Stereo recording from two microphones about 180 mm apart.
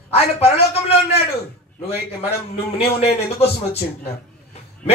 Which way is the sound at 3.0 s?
35° left (ahead or behind).